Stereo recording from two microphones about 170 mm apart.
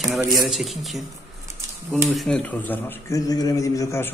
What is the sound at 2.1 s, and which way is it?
Speech, centre (ahead or behind).